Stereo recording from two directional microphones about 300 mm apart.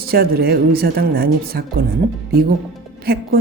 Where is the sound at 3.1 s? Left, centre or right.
Right.